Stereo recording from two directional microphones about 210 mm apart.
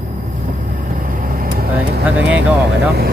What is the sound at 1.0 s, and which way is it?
Vehicle, 40° right (ahead or behind).